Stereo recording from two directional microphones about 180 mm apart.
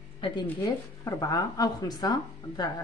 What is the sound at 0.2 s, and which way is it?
Speech, 30° left (ahead or behind).